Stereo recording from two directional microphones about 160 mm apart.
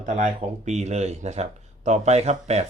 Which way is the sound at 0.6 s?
45° right (ahead or behind).